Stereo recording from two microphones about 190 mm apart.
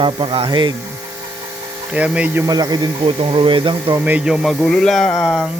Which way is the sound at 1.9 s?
5° right (ahead or behind).